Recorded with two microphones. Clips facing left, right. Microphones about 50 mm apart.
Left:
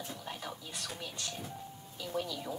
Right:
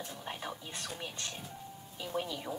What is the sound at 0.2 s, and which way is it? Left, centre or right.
Whispering, right.